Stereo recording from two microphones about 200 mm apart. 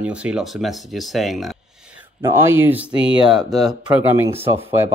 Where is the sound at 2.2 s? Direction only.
10° right (ahead or behind).